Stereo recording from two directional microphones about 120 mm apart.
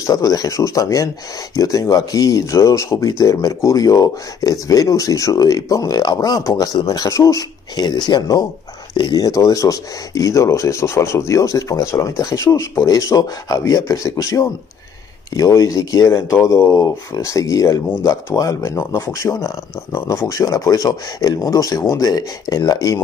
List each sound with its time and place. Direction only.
0.0 s speech: 30° left (ahead or behind)